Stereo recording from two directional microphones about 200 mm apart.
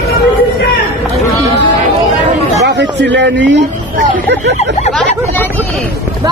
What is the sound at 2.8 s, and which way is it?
Speech, 60° right (ahead or behind).